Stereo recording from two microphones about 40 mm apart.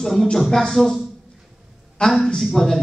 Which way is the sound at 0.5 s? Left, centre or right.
Centre.